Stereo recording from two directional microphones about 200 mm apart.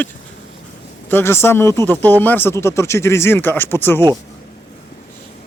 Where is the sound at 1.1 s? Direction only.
10° left (ahead or behind).